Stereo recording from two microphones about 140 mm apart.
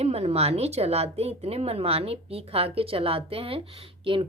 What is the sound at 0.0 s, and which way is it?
Speech, 50° right (ahead or behind).